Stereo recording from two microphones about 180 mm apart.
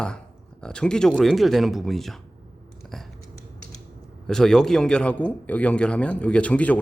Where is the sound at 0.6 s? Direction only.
5° left (ahead or behind).